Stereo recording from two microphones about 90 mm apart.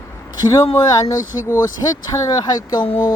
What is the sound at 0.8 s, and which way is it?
Speech, 45° left (ahead or behind).